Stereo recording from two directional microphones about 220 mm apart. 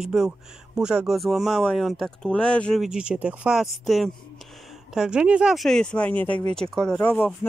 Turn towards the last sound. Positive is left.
turn(degrees=10)  # may be behind; listen again after turning